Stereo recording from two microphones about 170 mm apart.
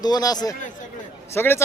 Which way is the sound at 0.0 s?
20° left (ahead or behind).